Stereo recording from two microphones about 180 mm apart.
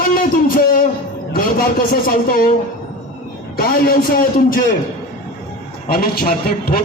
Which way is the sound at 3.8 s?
50° left (ahead or behind).